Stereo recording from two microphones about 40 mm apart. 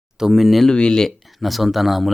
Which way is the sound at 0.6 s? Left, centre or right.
Left.